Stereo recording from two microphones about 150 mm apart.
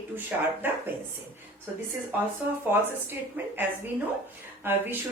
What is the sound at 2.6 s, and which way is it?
A woman's voice, 15° right (ahead or behind).